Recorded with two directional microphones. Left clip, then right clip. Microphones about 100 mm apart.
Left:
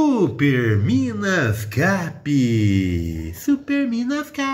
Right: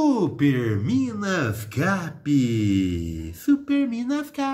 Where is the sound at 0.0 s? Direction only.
15° left (ahead or behind).